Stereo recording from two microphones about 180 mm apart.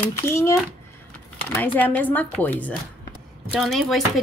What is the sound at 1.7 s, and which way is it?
A woman's voice, 10° left (ahead or behind).